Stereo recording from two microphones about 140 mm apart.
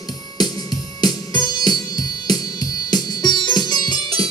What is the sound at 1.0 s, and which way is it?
Music, 30° left (ahead or behind).